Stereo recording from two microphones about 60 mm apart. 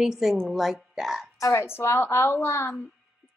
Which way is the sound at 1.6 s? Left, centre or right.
Left.